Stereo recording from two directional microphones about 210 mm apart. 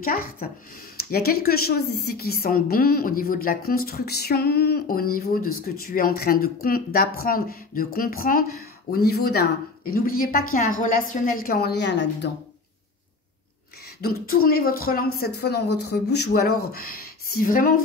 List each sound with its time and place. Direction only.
0.0 s a woman's voice: 45° left (ahead or behind)
14.0 s speech: 45° left (ahead or behind)